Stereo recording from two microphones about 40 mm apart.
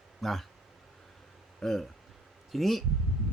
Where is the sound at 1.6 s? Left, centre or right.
Centre.